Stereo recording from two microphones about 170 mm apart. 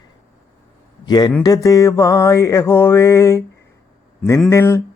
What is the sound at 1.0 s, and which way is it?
Speech, 25° left (ahead or behind).